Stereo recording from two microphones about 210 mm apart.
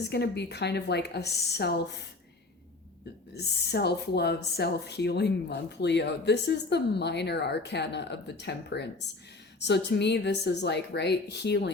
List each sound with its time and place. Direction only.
0.1 s speech: 50° left (ahead or behind)
3.7 s speech: 50° left (ahead or behind)